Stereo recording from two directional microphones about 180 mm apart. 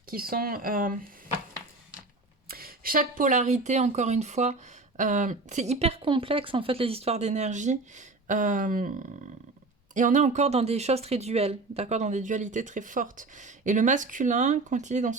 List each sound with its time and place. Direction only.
0.1 s speech: 55° right (ahead or behind)
2.5 s speech: 55° right (ahead or behind)
9.9 s speech: 45° right (ahead or behind)